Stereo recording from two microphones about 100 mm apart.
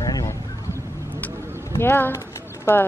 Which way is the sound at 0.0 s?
35° left (ahead or behind).